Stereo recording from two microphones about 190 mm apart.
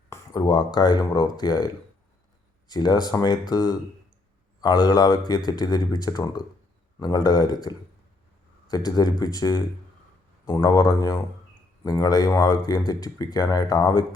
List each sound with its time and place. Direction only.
0.1 s speech: 20° left (ahead or behind)